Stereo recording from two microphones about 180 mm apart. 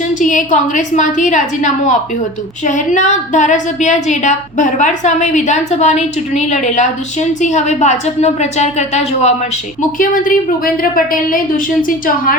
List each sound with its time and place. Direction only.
0.1 s a woman's voice: 45° left (ahead or behind)
10.0 s a woman's voice: 50° left (ahead or behind)